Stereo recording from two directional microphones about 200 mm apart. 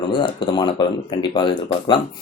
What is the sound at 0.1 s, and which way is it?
Speech, 25° left (ahead or behind).